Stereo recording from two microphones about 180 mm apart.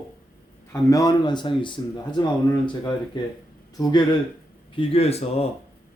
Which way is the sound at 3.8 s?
25° left (ahead or behind).